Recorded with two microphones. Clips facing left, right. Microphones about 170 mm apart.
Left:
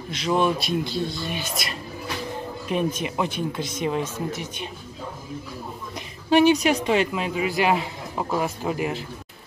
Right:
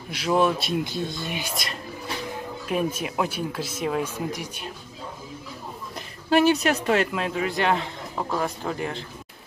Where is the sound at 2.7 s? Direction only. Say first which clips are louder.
Left 1 dB; 5° right (ahead or behind).